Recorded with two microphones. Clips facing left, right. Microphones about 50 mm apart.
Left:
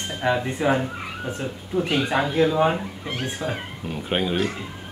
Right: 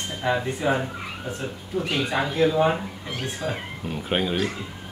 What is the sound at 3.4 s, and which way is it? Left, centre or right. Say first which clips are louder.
Speech: left 1 dB; centre.